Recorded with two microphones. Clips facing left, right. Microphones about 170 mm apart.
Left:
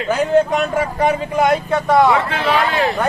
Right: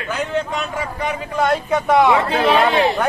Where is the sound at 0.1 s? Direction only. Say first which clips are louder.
Left 8 dB; 40° left (ahead or behind).